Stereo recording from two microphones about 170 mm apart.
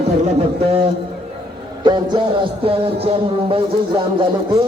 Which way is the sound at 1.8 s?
25° right (ahead or behind).